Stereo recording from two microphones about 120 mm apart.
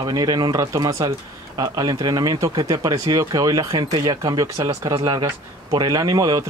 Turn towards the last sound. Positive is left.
turn(degrees=-30)  # may be behind; listen again after turning